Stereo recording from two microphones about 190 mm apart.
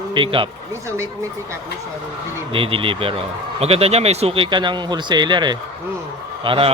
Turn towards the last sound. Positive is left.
turn(degrees=-30)  # may be behind; listen again after turning